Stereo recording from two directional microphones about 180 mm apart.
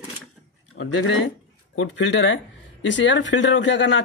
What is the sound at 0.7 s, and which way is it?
Speech, 90° left.